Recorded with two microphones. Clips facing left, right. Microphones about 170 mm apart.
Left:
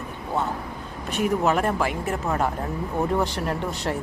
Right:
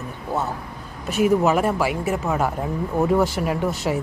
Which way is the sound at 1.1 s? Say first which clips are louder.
Right 4 dB; 5° right (ahead or behind).